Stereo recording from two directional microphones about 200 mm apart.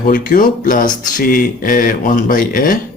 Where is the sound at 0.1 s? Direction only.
45° left (ahead or behind).